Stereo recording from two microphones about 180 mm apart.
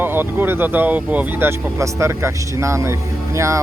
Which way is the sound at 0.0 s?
10° right (ahead or behind).